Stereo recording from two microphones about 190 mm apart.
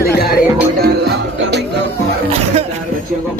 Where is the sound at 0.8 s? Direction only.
60° right (ahead or behind).